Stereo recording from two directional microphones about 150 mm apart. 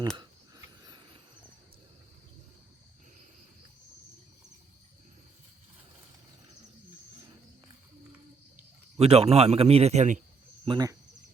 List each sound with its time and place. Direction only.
0.2 s a sound: 25° right (ahead or behind)
9.0 s a man's voice: 40° right (ahead or behind)
10.7 s speech: 25° right (ahead or behind)